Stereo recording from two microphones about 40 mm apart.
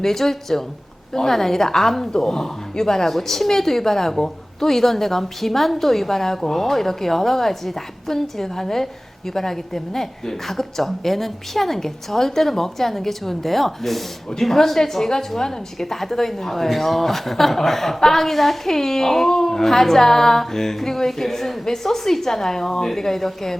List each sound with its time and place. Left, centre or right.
0.0 s a woman's voice: centre